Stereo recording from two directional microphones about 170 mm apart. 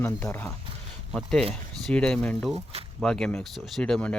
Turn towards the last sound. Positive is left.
turn(degrees=5)  # may be behind; listen again after turning